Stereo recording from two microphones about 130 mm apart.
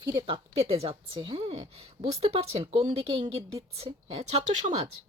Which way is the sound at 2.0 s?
50° right (ahead or behind).